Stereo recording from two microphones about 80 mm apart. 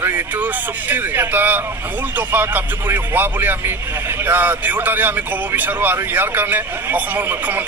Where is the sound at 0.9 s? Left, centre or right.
Right.